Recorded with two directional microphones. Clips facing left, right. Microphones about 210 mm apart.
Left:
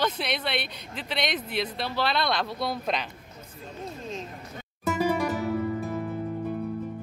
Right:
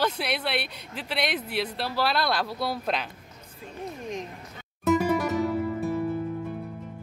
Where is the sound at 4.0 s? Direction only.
15° right (ahead or behind).